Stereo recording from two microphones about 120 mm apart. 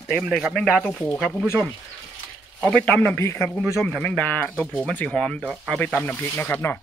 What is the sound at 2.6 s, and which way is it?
Speech, 10° left (ahead or behind).